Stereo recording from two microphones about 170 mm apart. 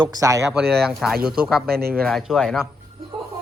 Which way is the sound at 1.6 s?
65° right (ahead or behind).